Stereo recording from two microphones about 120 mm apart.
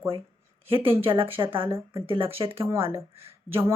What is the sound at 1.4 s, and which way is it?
Speech, 30° right (ahead or behind).